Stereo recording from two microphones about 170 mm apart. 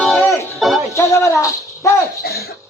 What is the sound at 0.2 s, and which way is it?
Music, 15° left (ahead or behind).